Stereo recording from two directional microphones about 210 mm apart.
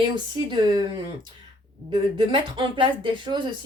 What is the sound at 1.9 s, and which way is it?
Speech, 20° right (ahead or behind).